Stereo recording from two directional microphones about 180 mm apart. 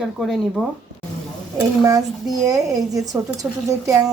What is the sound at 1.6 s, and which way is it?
A woman's voice, 20° right (ahead or behind).